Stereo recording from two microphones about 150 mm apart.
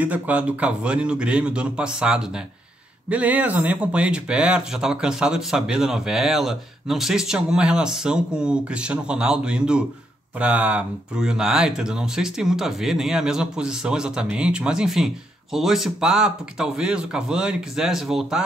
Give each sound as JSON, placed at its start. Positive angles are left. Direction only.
{"t": 0.0, "sound": "speech", "side_deg": -10}